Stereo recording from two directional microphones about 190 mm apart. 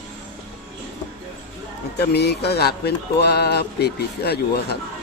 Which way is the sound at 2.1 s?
60° left (ahead or behind).